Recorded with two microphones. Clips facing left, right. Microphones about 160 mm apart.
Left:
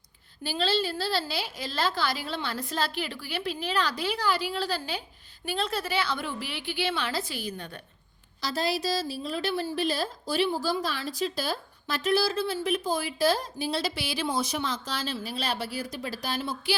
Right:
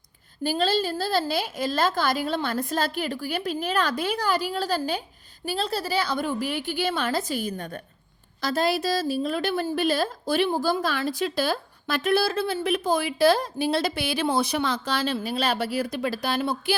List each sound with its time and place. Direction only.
0.4 s a woman's voice: 45° right (ahead or behind)